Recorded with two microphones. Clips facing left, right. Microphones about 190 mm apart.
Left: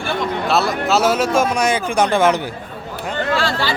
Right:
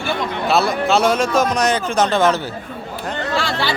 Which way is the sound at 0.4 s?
Centre (ahead or behind).